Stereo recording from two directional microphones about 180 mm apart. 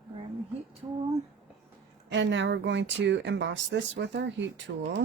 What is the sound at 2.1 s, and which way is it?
Speech, 85° right.